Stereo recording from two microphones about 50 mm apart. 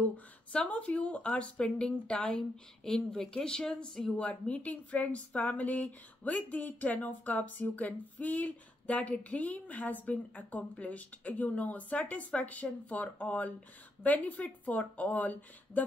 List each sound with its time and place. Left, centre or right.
0.7 s speech: left; by 4.1 s centre
4.2 s speech: left